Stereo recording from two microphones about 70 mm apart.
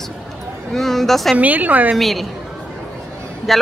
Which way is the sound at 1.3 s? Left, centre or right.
Right.